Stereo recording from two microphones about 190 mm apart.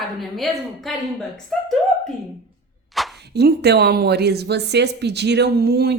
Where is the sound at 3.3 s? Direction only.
60° right (ahead or behind).